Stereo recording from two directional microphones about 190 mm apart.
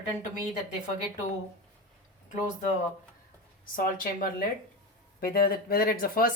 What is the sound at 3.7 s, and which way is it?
Speech, 50° left (ahead or behind).